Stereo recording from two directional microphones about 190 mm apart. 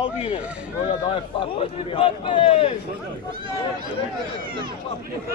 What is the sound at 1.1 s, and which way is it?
A man's voice, 30° left (ahead or behind).